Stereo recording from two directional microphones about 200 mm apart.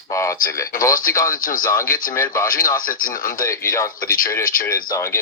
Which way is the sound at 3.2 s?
15° left (ahead or behind).